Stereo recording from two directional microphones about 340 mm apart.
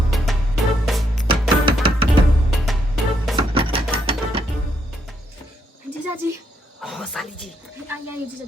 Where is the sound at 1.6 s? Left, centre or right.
Centre.